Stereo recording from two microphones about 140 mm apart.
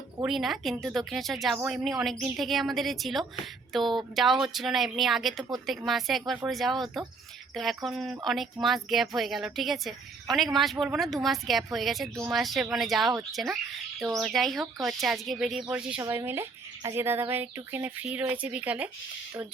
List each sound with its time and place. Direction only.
0.3 s a woman's voice: centre (ahead or behind)
16.0 s speech: 20° right (ahead or behind)